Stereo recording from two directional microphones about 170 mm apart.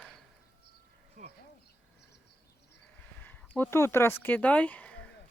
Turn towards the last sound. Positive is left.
turn(degrees=5)  # may be behind; listen again after turning